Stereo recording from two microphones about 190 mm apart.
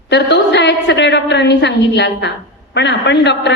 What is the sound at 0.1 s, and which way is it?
A woman's voice, 65° left (ahead or behind).